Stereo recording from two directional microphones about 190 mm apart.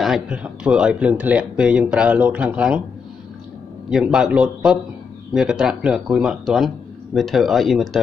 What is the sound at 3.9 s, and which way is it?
Speech, 5° right (ahead or behind).